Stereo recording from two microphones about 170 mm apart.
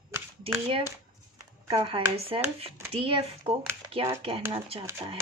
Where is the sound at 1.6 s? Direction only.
30° right (ahead or behind).